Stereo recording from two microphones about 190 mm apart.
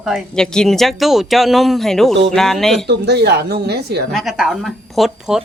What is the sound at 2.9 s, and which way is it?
Speech, 60° right (ahead or behind).